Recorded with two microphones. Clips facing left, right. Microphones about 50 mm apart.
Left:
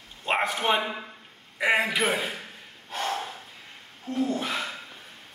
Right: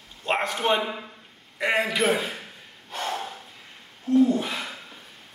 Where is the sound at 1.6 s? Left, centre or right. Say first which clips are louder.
Even; centre.